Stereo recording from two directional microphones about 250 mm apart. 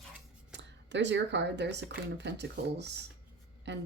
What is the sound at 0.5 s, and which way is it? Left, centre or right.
Speech, right.